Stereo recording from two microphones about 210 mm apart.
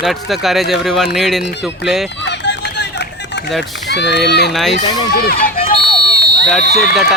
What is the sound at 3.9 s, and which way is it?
Speech, 55° left (ahead or behind).